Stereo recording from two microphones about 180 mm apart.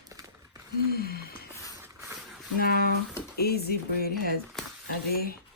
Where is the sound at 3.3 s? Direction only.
60° left (ahead or behind).